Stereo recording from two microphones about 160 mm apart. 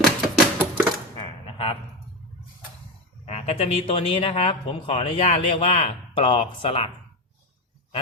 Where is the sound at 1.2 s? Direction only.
35° left (ahead or behind).